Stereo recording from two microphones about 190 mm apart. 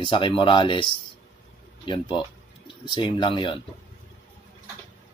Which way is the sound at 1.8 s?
25° left (ahead or behind).